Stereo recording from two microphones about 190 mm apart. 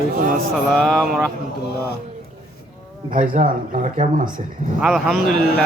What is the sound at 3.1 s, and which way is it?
A man's voice, 45° right (ahead or behind).